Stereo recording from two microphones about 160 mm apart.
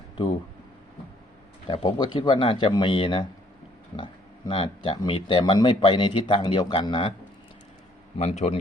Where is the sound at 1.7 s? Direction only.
30° left (ahead or behind).